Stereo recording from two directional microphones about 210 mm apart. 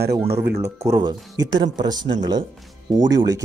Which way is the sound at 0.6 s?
15° right (ahead or behind).